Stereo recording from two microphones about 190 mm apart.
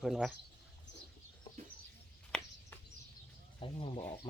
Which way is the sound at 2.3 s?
5° left (ahead or behind).